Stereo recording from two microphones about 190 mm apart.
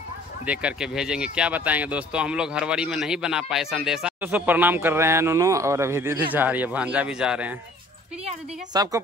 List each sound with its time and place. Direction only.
0.5 s speech: 5° right (ahead or behind)
8.7 s speech: 20° right (ahead or behind)